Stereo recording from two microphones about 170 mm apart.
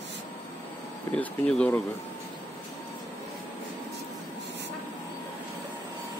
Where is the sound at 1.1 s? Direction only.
5° left (ahead or behind).